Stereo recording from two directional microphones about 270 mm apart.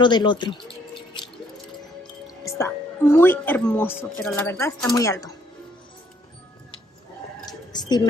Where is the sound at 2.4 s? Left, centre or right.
Centre.